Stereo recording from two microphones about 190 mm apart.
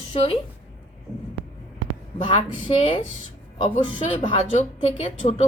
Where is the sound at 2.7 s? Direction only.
25° left (ahead or behind).